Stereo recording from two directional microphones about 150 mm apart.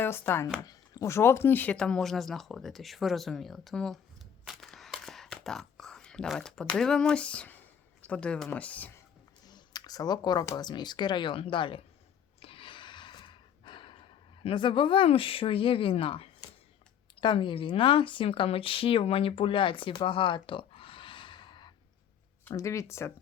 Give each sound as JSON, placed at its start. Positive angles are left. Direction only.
{"t": 0.0, "sound": "speech", "side_deg": 15}
{"t": 9.5, "sound": "speech", "side_deg": 25}
{"t": 12.4, "sound": "gasp", "side_deg": 35}
{"t": 17.2, "sound": "speech", "side_deg": 35}
{"t": 22.4, "sound": "speech", "side_deg": 20}